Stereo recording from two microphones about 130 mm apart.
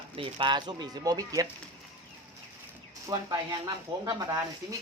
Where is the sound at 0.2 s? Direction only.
35° right (ahead or behind).